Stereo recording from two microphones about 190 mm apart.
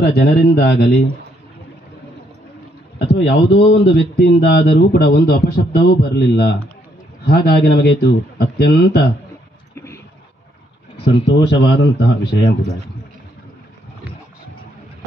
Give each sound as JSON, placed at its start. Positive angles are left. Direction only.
{"t": 0.0, "sound": "speech", "side_deg": 60}
{"t": 3.1, "sound": "speech", "side_deg": 60}
{"t": 11.3, "sound": "speech", "side_deg": 60}